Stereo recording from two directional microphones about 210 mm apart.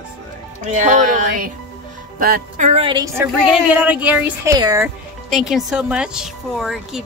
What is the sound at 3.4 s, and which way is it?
A woman's voice, 5° right (ahead or behind).